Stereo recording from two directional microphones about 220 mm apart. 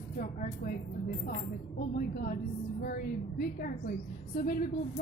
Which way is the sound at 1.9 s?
40° left (ahead or behind).